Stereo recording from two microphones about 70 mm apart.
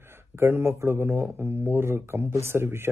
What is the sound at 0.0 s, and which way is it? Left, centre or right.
Speech, right.